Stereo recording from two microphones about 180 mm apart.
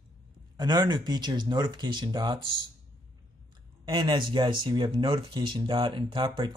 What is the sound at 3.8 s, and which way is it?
Speech, 25° right (ahead or behind).